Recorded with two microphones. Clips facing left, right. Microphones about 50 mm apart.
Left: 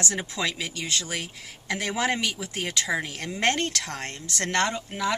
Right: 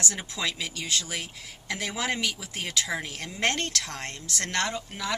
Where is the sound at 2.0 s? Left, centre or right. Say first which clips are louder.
Left 2 dB; centre.